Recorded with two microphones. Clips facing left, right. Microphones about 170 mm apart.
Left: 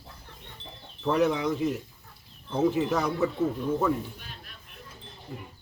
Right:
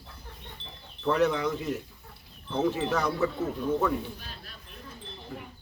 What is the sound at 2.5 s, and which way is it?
Speech, 10° left (ahead or behind).